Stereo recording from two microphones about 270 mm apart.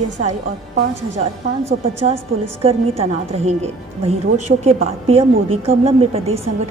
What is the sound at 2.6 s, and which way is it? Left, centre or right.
A woman's voice, right.